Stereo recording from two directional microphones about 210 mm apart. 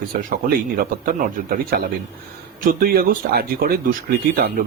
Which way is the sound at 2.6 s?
45° right (ahead or behind).